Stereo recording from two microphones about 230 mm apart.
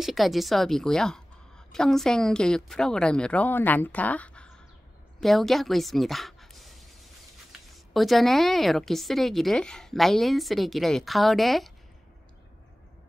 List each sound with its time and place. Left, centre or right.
0.0 s a woman's voice: centre